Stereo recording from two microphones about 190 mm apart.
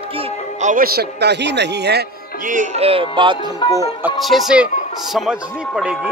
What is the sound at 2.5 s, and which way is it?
Speech, 35° right (ahead or behind).